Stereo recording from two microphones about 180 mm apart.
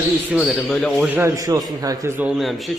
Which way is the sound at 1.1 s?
15° right (ahead or behind).